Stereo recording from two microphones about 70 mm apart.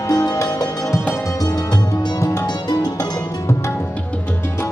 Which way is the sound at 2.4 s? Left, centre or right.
Left.